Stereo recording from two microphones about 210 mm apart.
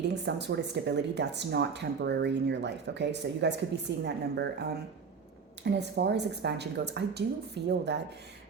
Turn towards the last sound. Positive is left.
turn(degrees=-55)  # may be behind; listen again after turning